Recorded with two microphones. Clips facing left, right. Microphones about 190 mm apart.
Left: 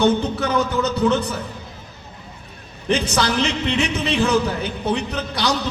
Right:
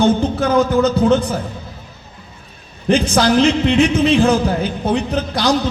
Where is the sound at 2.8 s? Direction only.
55° right (ahead or behind).